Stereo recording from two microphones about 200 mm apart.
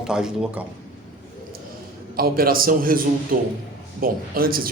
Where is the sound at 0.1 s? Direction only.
5° right (ahead or behind).